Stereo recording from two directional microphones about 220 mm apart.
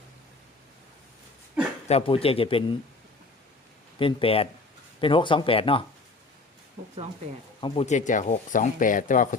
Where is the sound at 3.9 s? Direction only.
25° left (ahead or behind).